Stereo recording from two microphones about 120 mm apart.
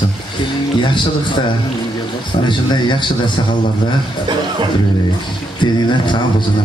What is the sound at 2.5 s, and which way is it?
Speech, 40° left (ahead or behind).